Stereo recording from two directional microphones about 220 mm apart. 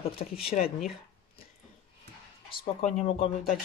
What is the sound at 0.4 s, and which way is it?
Speech, 25° left (ahead or behind).